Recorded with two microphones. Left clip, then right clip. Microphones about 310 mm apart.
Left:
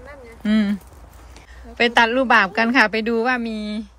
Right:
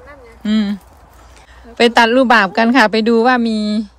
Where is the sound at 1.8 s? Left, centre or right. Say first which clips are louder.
Right 6 dB; centre.